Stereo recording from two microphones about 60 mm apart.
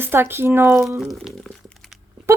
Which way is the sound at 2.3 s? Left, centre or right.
Right.